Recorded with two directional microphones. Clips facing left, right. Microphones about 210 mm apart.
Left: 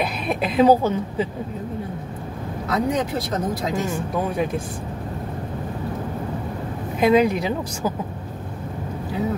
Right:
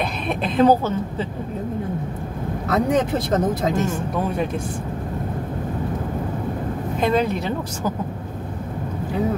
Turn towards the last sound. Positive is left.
turn(degrees=10)  # may be behind; listen again after turning